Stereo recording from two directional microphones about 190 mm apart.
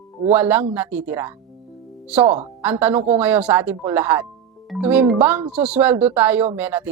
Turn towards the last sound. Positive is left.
turn(degrees=-10)  # may be behind; listen again after turning